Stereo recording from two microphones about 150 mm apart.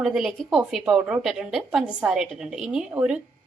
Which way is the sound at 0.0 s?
5° right (ahead or behind).